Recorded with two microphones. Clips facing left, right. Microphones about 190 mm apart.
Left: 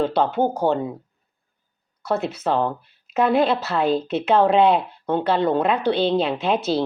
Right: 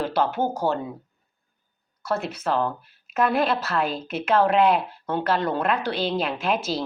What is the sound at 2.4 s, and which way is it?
A woman's voice, 25° left (ahead or behind).